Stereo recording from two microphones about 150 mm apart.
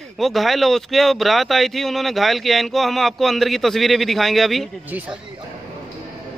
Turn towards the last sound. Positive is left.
turn(degrees=0)  # may be behind; listen again after turning